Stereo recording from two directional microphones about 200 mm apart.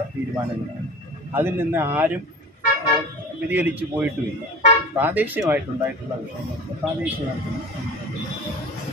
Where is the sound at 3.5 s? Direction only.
10° right (ahead or behind).